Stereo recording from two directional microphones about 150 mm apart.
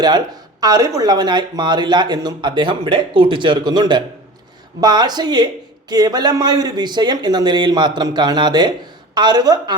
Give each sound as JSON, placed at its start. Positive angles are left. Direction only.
{"t": 0.6, "sound": "speech", "side_deg": -25}